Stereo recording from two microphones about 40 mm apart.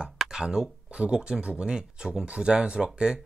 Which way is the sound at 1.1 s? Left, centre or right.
Right.